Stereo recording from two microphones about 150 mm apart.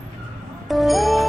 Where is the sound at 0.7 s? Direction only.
Centre (ahead or behind).